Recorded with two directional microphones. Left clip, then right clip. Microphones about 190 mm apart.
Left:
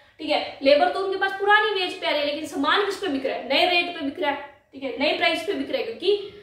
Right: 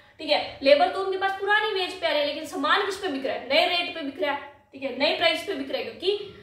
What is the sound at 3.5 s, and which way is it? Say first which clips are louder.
Speech: left 2 dB; 30° left (ahead or behind).